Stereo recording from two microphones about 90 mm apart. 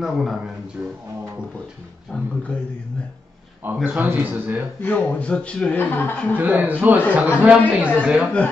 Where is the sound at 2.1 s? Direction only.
15° left (ahead or behind).